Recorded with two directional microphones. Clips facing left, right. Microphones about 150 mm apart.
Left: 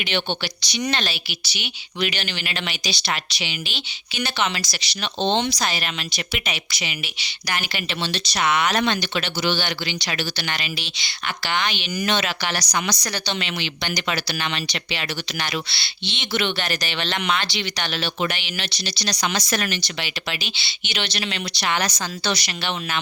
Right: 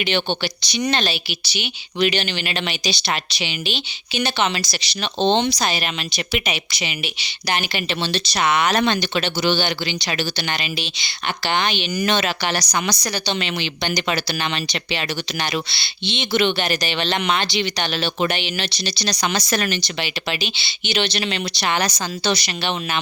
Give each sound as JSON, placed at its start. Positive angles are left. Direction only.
{"t": 0.0, "sound": "a woman's voice", "side_deg": -30}